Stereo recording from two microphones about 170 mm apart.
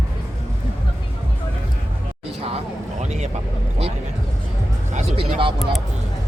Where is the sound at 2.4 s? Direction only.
40° right (ahead or behind).